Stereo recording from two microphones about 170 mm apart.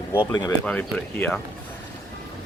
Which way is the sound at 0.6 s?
5° left (ahead or behind).